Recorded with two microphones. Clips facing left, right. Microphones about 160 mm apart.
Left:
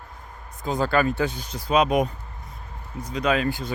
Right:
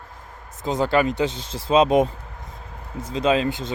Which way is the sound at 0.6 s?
20° right (ahead or behind).